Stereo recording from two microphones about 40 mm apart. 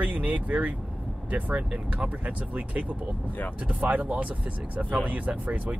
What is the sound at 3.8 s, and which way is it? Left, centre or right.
Speech, right.